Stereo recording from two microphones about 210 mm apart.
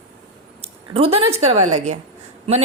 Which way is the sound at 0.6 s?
25° right (ahead or behind).